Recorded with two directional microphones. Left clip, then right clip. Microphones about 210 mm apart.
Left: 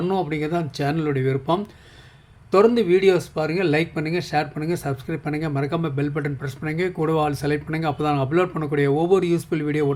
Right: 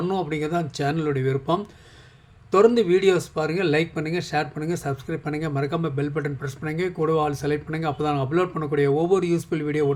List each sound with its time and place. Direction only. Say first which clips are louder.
0.0 s speech: left 2 dB; 5° left (ahead or behind)